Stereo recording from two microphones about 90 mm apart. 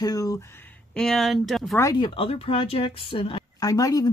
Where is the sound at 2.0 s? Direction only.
85° left.